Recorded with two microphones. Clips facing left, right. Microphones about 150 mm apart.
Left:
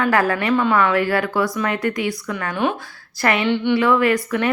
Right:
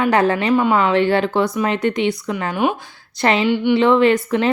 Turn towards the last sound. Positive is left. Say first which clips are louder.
# right 3 dB
turn(degrees=-25)  # may be behind; listen again after turning